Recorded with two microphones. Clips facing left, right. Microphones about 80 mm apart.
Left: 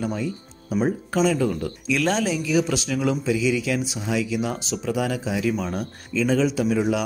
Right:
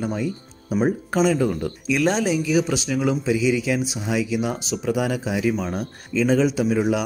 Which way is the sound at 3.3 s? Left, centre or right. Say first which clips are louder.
Right 3 dB; right.